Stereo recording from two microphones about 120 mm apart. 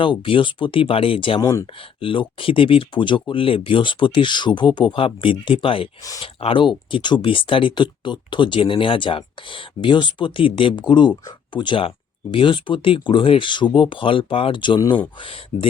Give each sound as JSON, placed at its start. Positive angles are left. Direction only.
{"t": 0.0, "sound": "speech", "side_deg": 45}
{"t": 1.4, "sound": "speech", "side_deg": 25}
{"t": 2.0, "sound": "speech", "side_deg": 50}